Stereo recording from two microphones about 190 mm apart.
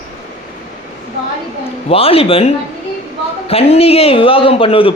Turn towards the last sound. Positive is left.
turn(degrees=30)  # may be behind; listen again after turning